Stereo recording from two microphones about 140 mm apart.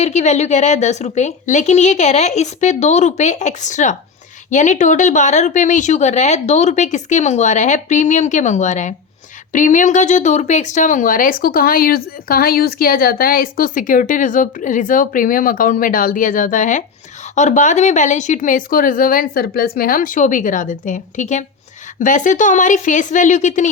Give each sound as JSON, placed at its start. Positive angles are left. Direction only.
{"t": 0.0, "sound": "speech", "side_deg": 55}